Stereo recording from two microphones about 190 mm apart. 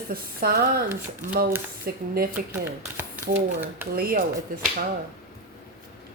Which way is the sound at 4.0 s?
50° right (ahead or behind).